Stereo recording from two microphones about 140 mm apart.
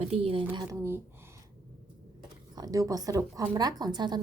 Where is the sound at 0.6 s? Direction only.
20° right (ahead or behind).